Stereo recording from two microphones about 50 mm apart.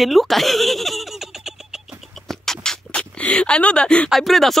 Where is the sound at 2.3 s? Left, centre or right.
Centre.